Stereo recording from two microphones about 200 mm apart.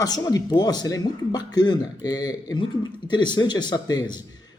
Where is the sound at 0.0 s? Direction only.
20° left (ahead or behind).